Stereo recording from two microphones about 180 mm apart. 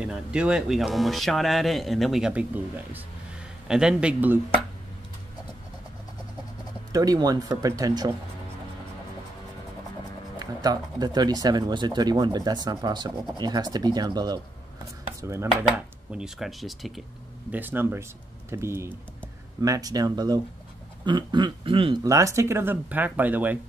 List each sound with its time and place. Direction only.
0.0 s speech: 5° right (ahead or behind)
6.9 s speech: 20° right (ahead or behind)
10.4 s speech: 20° right (ahead or behind)
16.1 s speech: 5° right (ahead or behind)
17.5 s speech: 10° right (ahead or behind); by 21.9 s 30° right (ahead or behind)
22.0 s speech: 15° right (ahead or behind)